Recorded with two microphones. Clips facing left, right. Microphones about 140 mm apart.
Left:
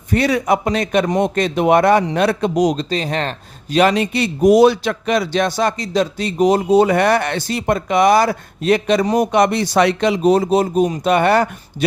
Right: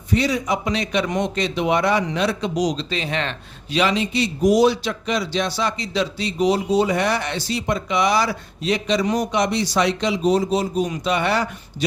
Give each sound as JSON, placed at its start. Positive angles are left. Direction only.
{"t": 0.1, "sound": "a man's voice", "side_deg": 60}